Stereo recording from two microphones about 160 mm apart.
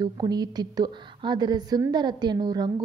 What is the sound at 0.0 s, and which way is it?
A woman's voice, 25° right (ahead or behind).